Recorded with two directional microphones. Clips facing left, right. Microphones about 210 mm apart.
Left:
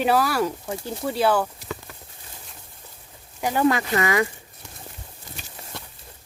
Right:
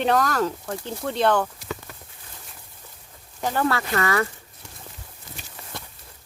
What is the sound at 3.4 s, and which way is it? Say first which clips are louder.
Speech: left 3 dB; 15° left (ahead or behind).